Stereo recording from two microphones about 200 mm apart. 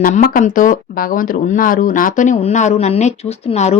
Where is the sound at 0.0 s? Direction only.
40° left (ahead or behind).